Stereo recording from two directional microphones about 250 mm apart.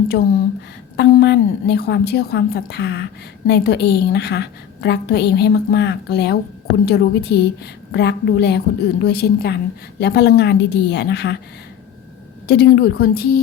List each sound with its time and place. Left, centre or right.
0.9 s a woman's voice: left
12.5 s a woman's voice: left